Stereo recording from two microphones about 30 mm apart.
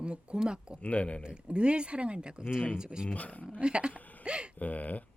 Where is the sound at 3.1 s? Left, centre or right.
Left.